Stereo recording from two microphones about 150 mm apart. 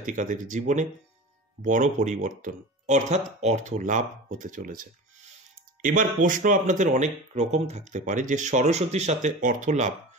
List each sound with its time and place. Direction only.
0.0 s speech: 60° right (ahead or behind)